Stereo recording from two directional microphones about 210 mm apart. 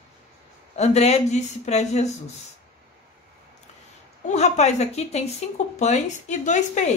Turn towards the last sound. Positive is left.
turn(degrees=35)  # may be behind; listen again after turning